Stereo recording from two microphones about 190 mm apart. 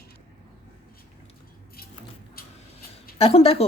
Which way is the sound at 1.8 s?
55° left (ahead or behind).